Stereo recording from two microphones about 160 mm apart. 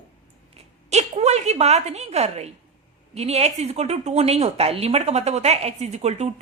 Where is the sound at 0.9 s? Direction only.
45° right (ahead or behind).